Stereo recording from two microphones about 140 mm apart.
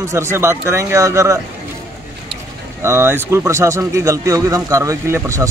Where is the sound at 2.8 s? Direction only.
15° right (ahead or behind).